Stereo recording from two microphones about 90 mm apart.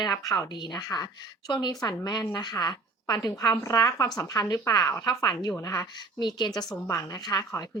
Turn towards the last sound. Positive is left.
turn(degrees=45)  # may be behind; listen again after turning